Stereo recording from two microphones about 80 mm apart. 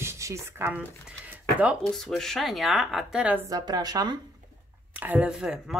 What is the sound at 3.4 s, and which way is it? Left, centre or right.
Speech, right.